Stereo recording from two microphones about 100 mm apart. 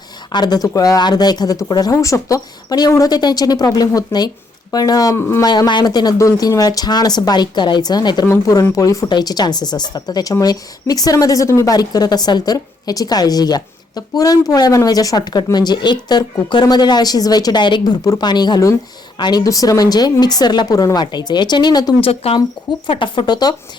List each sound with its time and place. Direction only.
0.3 s a woman's voice: 45° left (ahead or behind)
11.7 s a woman's voice: 40° left (ahead or behind)
22.0 s speech: 75° left (ahead or behind)
22.9 s speech: 55° left (ahead or behind)